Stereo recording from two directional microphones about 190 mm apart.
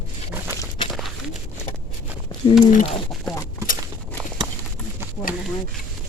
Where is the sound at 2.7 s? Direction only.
40° left (ahead or behind).